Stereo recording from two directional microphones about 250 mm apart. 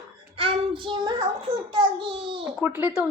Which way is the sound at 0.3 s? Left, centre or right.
Right.